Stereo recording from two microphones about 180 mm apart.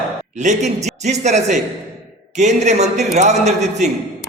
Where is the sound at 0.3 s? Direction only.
40° right (ahead or behind).